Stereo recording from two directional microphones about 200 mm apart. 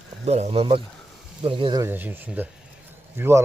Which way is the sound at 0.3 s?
35° right (ahead or behind).